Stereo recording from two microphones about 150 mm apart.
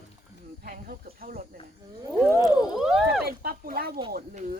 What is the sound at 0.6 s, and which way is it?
Speech, 70° right (ahead or behind).